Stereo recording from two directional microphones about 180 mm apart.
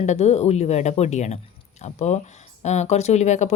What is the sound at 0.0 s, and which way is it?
Speech, 40° left (ahead or behind).